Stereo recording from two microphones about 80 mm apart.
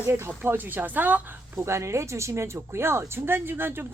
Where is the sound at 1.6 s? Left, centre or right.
Right.